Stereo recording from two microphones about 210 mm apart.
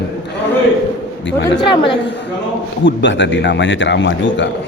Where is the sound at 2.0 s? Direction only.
55° left (ahead or behind).